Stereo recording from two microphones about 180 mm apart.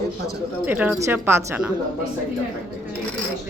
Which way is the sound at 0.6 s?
10° right (ahead or behind).